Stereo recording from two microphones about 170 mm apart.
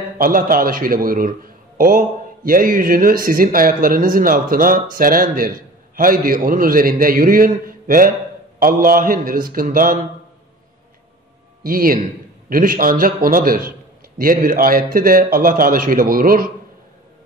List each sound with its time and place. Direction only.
0.2 s a man's voice: 55° right (ahead or behind)
11.6 s a man's voice: 55° right (ahead or behind)